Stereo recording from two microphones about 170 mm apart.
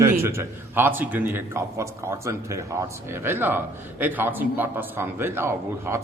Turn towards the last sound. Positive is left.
turn(degrees=-15)  # may be behind; listen again after turning